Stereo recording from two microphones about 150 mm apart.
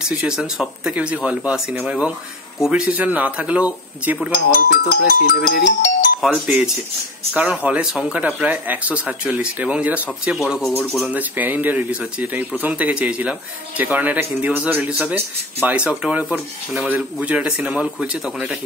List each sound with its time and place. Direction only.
0.0 s speech: 5° right (ahead or behind)
4.3 s speech: 70° left (ahead or behind)
6.4 s speech: 5° right (ahead or behind)